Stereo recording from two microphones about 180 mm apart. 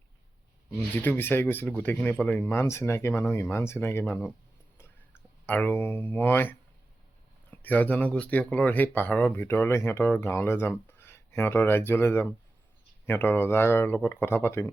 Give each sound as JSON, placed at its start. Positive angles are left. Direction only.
{"t": 1.0, "sound": "speech", "side_deg": 10}
{"t": 5.5, "sound": "speech", "side_deg": 10}